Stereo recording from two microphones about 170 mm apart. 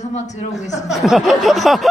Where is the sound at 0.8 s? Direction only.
Centre (ahead or behind).